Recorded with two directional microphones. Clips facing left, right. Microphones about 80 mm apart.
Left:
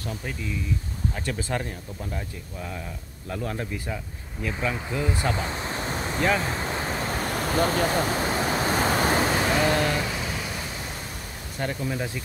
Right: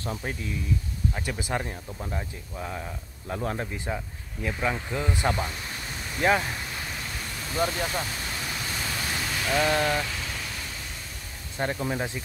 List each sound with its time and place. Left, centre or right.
0.0 s speech: right
1.1 s speech: centre
5.3 s waves: left
9.5 s speech: left
9.9 s a sound: centre
11.5 s speech: right